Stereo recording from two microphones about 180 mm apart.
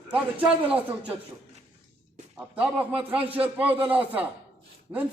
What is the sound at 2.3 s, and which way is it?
Speech, 10° right (ahead or behind).